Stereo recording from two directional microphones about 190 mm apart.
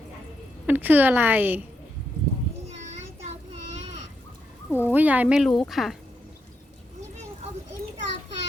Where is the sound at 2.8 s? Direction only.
40° right (ahead or behind).